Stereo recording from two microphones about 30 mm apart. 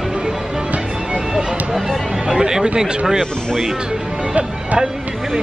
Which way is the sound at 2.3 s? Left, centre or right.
Centre.